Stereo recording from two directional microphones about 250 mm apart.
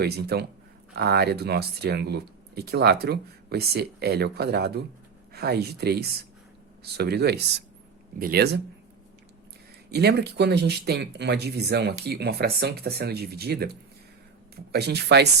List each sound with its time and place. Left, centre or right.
0.0 s speech: right
9.9 s speech: right